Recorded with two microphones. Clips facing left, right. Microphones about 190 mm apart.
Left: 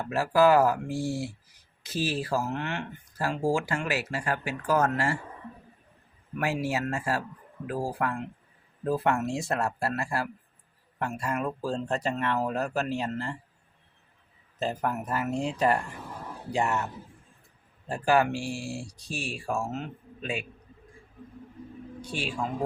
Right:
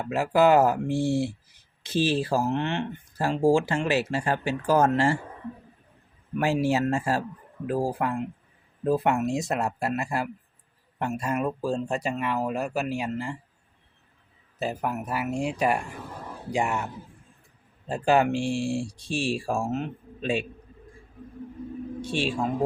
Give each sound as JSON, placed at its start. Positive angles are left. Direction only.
{"t": 0.0, "sound": "speech", "side_deg": -20}
{"t": 6.4, "sound": "speech", "side_deg": -30}
{"t": 14.6, "sound": "speech", "side_deg": -10}
{"t": 17.8, "sound": "speech", "side_deg": -20}
{"t": 22.0, "sound": "speech", "side_deg": -25}